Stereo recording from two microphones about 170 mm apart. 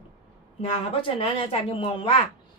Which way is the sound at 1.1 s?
35° left (ahead or behind).